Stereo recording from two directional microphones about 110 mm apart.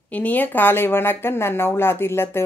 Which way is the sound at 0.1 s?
15° left (ahead or behind).